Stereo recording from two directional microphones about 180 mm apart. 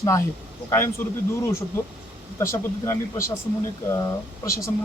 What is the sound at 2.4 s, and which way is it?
Speech, 15° left (ahead or behind).